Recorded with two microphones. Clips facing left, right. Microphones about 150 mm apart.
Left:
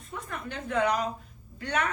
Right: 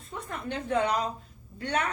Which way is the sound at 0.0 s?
30° right (ahead or behind).